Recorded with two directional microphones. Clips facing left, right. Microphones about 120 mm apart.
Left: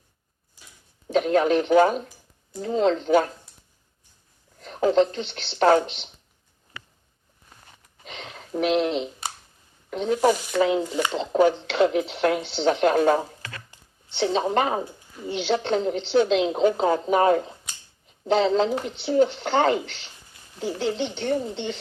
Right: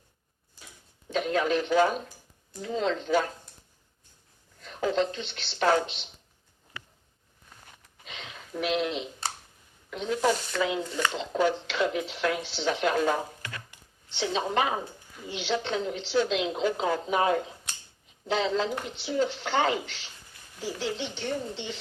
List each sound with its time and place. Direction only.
1.0 s speech: 45° left (ahead or behind)
4.6 s a woman's voice: 40° left (ahead or behind)
5.3 s a woman's voice: 55° left (ahead or behind)
8.0 s a sound: 40° left (ahead or behind)
9.9 s a woman's voice: 40° left (ahead or behind)
11.4 s a woman's voice: 55° left (ahead or behind)
14.3 s speech: 30° left (ahead or behind)
14.5 s a woman's voice: 45° left (ahead or behind)
20.6 s speech: 55° left (ahead or behind)